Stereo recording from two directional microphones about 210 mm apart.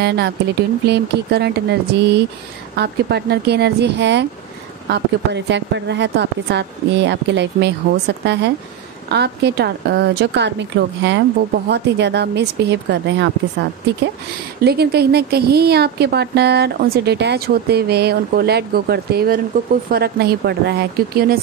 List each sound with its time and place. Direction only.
0.0 s a woman's voice: 50° right (ahead or behind)
14.6 s a woman's voice: 50° right (ahead or behind)